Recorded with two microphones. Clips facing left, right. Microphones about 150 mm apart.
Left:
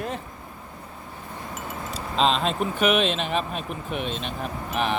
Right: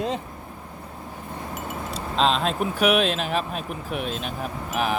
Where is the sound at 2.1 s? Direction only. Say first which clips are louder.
Even; centre (ahead or behind).